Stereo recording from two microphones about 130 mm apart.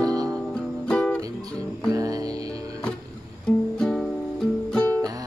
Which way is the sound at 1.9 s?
25° right (ahead or behind).